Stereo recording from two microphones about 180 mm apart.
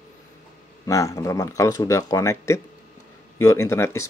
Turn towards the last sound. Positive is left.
turn(degrees=15)  # may be behind; listen again after turning